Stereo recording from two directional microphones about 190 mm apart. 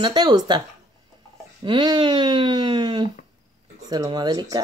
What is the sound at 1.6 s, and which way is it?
Speech, 25° right (ahead or behind).